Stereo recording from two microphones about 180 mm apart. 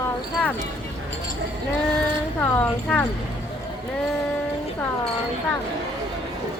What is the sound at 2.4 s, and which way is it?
Speech, 10° left (ahead or behind).